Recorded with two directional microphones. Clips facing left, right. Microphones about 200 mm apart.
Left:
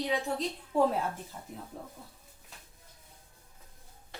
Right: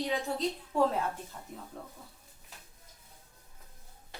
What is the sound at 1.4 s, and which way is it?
Speech, 15° left (ahead or behind).